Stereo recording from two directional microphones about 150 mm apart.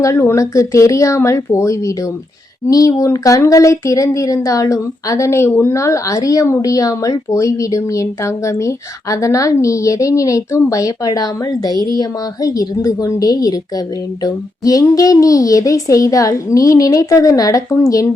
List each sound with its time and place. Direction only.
0.0 s speech: 20° left (ahead or behind)